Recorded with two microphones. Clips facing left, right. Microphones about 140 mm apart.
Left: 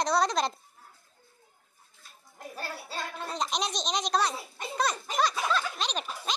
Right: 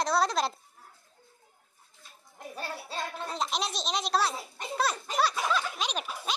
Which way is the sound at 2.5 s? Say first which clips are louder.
Right 1 dB; centre (ahead or behind).